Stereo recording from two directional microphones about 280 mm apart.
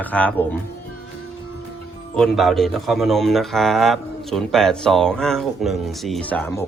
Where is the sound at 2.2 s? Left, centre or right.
Centre.